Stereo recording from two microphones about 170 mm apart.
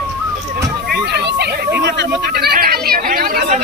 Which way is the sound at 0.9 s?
75° right (ahead or behind).